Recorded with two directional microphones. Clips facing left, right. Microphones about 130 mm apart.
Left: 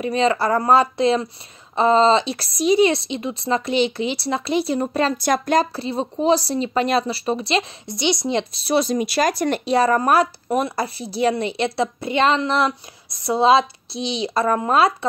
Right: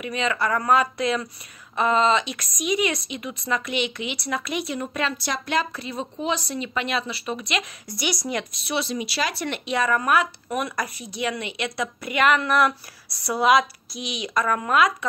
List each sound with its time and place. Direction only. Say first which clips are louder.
0.0 s a woman's voice: left 6 dB; 35° left (ahead or behind)